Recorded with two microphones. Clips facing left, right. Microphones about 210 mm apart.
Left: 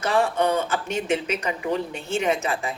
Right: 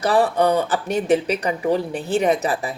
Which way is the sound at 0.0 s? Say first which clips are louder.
Right 4 dB; 35° right (ahead or behind).